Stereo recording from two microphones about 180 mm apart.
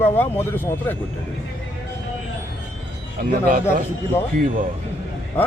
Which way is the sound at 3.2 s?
55° right (ahead or behind).